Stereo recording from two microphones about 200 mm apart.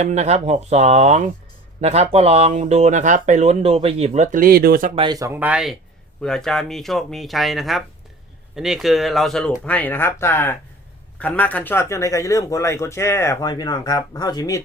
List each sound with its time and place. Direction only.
0.0 s speech: 35° right (ahead or behind)
4.9 s speech: 20° right (ahead or behind); by 14.6 s 20° left (ahead or behind)